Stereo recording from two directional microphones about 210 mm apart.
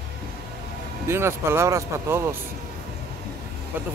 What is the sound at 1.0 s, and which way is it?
Speech, 10° right (ahead or behind).